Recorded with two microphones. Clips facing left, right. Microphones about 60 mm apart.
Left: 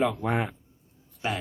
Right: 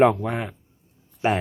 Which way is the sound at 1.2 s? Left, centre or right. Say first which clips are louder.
Right 8 dB; right.